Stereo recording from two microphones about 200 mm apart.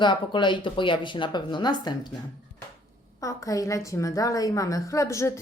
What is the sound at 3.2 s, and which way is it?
A woman's voice, 15° left (ahead or behind).